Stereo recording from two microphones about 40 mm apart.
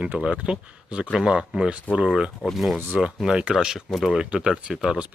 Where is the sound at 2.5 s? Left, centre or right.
Centre.